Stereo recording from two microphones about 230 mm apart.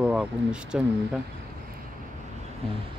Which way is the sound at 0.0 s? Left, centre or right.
Centre.